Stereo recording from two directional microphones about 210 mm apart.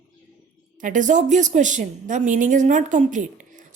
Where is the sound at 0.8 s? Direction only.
35° right (ahead or behind).